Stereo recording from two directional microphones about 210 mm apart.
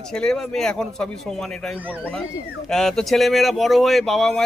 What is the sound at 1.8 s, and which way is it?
Speech, 5° right (ahead or behind).